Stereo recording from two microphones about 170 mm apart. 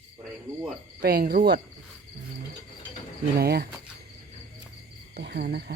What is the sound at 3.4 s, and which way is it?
Speech, 70° right (ahead or behind).